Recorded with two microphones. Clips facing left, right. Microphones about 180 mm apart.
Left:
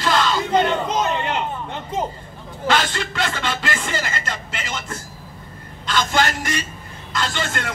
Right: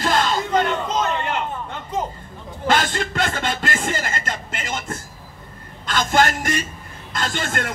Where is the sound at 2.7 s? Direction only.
50° right (ahead or behind).